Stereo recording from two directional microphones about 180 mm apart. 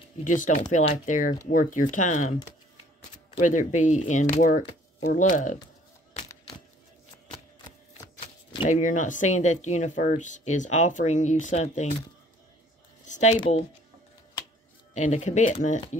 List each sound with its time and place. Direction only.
0.2 s speech: 45° left (ahead or behind)
3.3 s speech: 45° left (ahead or behind)
8.6 s speech: 45° left (ahead or behind)
13.0 s a sound: 40° left (ahead or behind)
13.4 s speech: 35° left (ahead or behind)
15.0 s speech: 40° left (ahead or behind)